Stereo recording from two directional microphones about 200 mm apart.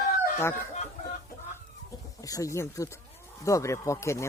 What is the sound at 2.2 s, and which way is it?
Speech, 15° left (ahead or behind).